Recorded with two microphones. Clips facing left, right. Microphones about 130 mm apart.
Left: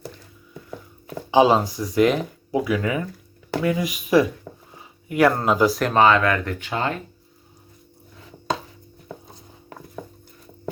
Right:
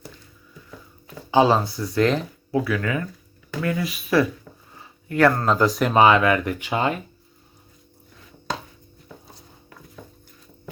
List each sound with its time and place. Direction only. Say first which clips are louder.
1.3 s speech: left 1 dB; 15° left (ahead or behind)
5.7 s speech: right 1 dB; 5° right (ahead or behind)